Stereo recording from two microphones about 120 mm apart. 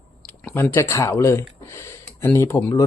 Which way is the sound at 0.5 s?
20° left (ahead or behind).